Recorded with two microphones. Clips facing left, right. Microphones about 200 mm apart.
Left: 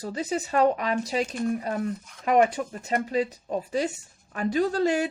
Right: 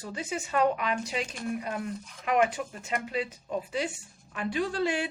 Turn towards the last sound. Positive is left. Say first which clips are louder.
# left 5 dB
turn(degrees=40)  # may be behind; listen again after turning